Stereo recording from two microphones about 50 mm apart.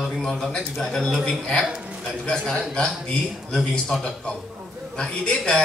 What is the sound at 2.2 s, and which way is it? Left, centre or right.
A man's voice, centre.